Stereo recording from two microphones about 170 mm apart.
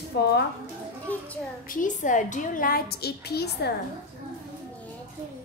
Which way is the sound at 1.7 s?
50° left (ahead or behind).